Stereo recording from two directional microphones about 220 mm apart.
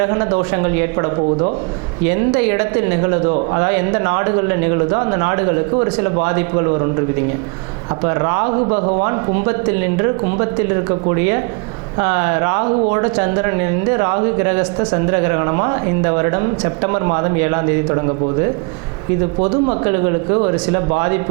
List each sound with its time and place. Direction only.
0.0 s speech: 20° right (ahead or behind)
8.0 s speech: 20° right (ahead or behind)
11.9 s speech: 20° right (ahead or behind)
19.4 s speech: 25° right (ahead or behind)